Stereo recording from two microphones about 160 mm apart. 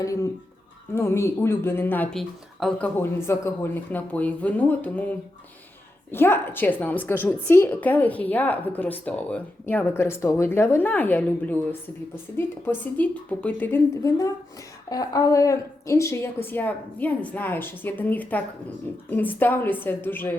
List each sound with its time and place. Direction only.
0.0 s a woman's voice: 20° left (ahead or behind)